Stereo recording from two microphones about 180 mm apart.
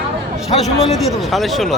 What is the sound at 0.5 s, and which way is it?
Speech, 40° left (ahead or behind).